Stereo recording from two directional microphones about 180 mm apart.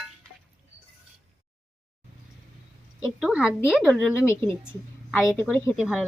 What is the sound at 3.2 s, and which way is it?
Speech, 5° right (ahead or behind).